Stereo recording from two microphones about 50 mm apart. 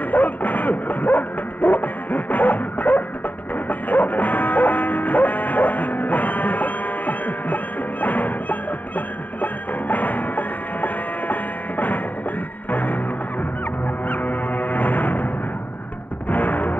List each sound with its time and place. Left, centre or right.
0.1 s bow-wow: left
3.6 s music: left
12.7 s music: left
14.0 s music: left
16.3 s music: left